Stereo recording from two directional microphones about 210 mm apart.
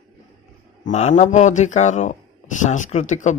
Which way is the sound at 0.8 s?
35° left (ahead or behind).